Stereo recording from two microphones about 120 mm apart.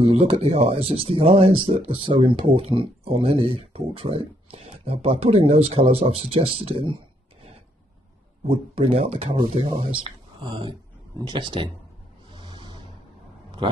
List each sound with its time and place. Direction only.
0.0 s speech: 60° right (ahead or behind)
8.5 s speech: 55° right (ahead or behind)
10.0 s speech: 40° right (ahead or behind)
12.3 s a sound: 40° right (ahead or behind)
13.6 s speech: 45° right (ahead or behind)